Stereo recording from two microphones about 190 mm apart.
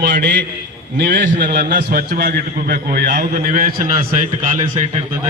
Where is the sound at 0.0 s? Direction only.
65° right (ahead or behind).